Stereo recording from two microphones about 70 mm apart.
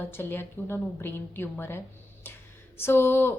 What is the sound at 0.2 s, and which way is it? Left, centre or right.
A woman's voice, left.